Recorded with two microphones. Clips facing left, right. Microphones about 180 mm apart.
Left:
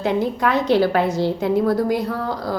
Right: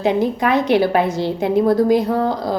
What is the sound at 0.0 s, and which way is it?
A woman's voice, 15° right (ahead or behind).